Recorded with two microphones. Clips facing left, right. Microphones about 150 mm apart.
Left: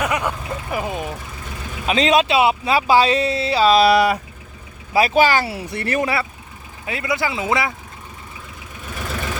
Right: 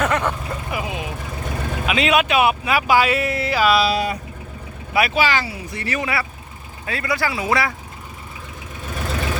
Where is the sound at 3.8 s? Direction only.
70° left (ahead or behind).